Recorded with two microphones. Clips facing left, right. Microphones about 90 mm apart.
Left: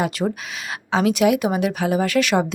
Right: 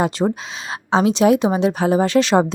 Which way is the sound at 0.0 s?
30° right (ahead or behind).